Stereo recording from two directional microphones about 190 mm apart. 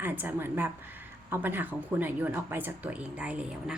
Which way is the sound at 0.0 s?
10° right (ahead or behind).